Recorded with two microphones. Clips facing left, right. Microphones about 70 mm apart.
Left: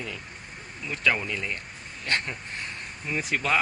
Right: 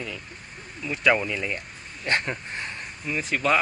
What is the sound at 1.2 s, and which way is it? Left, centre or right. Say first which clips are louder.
Speech: right 3 dB; centre.